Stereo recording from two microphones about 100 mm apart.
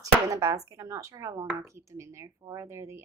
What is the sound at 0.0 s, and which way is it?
A woman's voice, 35° right (ahead or behind).